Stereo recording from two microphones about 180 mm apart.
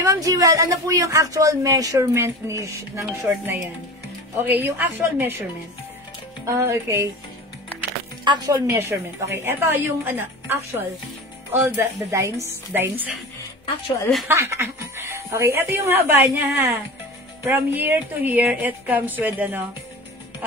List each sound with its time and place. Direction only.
0.0 s a woman's voice: 20° right (ahead or behind)
6.4 s a woman's voice: 15° right (ahead or behind)
8.2 s a woman's voice: 20° right (ahead or behind)
14.2 s a woman's voice: 15° right (ahead or behind)